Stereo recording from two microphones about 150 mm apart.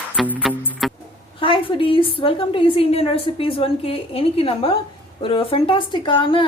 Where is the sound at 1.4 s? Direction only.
35° left (ahead or behind).